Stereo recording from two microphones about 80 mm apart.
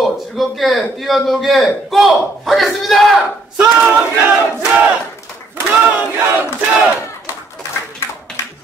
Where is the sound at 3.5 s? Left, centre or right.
Right.